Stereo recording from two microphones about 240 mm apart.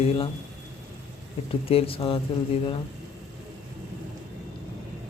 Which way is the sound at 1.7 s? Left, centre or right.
Left.